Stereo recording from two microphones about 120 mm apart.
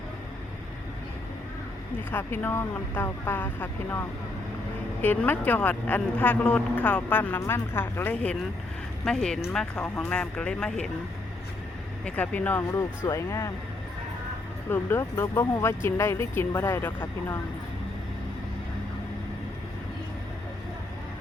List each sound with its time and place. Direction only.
2.0 s speech: 15° left (ahead or behind)
5.0 s speech: 15° left (ahead or behind)
12.0 s speech: 15° left (ahead or behind)
14.7 s speech: 20° left (ahead or behind)